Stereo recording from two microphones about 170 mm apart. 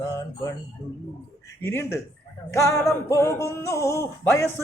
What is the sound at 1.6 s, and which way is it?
Speech, 15° left (ahead or behind).